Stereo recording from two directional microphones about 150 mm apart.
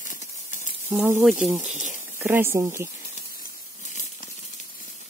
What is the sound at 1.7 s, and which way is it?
Speech, 55° right (ahead or behind).